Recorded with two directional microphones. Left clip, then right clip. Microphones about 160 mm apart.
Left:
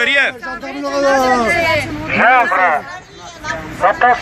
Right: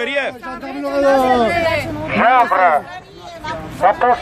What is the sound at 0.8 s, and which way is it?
Speech, 35° right (ahead or behind).